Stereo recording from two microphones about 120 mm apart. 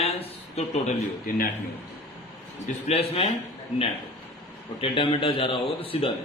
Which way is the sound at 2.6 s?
60° left (ahead or behind).